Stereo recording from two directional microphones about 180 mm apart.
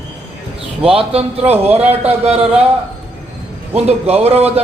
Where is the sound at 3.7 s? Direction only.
35° right (ahead or behind).